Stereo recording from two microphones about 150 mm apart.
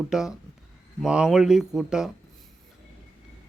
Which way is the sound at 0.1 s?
5° right (ahead or behind).